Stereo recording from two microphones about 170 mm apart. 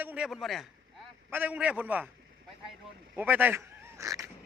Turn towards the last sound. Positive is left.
turn(degrees=-20)  # may be behind; listen again after turning